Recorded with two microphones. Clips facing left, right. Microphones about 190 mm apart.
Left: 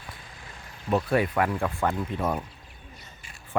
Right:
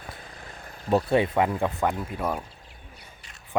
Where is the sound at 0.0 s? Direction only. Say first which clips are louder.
Right 3 dB; 40° right (ahead or behind).